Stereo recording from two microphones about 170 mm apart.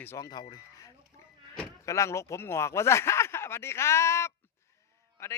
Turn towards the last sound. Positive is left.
turn(degrees=15)  # may be behind; listen again after turning